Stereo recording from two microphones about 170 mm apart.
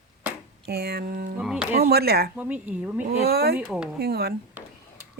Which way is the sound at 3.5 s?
5° right (ahead or behind).